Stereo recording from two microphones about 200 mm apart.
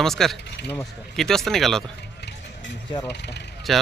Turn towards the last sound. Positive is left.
turn(degrees=0)  # may be behind; listen again after turning